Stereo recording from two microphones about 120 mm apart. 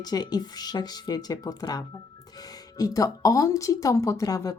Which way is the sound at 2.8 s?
30° left (ahead or behind).